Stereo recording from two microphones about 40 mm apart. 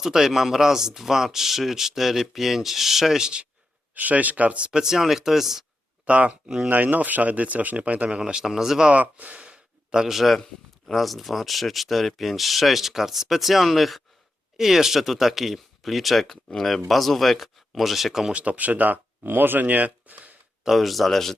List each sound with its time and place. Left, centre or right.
0.0 s speech: centre
3.9 s speech: right
4.7 s speech: centre
6.1 s speech: right
6.7 s speech: right
8.1 s speech: centre
8.9 s a sound: right
10.1 s speech: centre
18.3 s speech: right
19.2 s speech: right
20.7 s speech: centre